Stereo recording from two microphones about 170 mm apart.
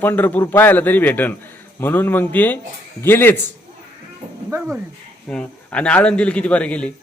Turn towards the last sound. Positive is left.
turn(degrees=5)  # may be behind; listen again after turning